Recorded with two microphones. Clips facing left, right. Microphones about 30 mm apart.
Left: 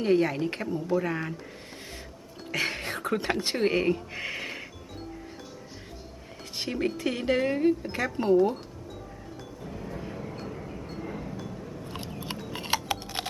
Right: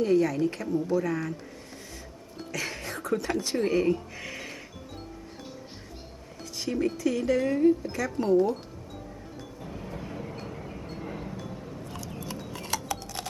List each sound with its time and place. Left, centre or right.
0.0 s speech: left
2.5 s speech: left
6.5 s speech: left
9.6 s vehicle: centre
12.5 s a sound: left